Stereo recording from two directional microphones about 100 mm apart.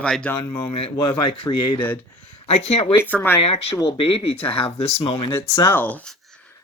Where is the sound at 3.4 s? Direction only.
90° left.